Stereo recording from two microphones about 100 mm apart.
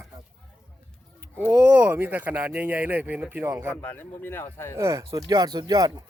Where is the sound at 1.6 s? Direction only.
20° right (ahead or behind).